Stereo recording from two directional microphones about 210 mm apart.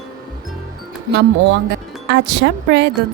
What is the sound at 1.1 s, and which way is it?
A woman's voice, 55° right (ahead or behind).